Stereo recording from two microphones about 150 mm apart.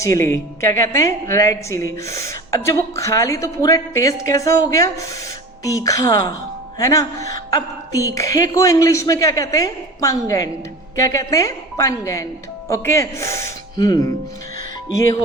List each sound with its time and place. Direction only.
0.0 s a woman's voice: 20° left (ahead or behind)